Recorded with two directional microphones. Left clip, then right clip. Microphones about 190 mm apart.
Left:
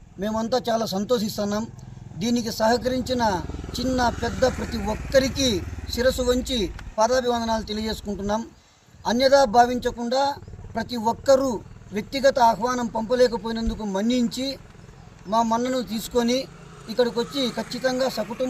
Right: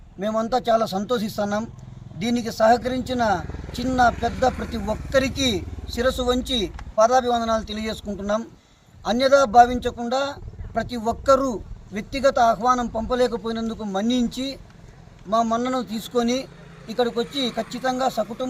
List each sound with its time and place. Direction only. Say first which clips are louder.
0.2 s speech: right 2 dB; 5° right (ahead or behind)
16.4 s vehicle: left 2 dB; 25° right (ahead or behind)
17.0 s speech: even; 5° right (ahead or behind)